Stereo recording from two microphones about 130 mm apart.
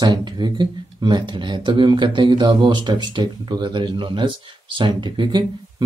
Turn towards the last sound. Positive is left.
turn(degrees=-35)  # may be behind; listen again after turning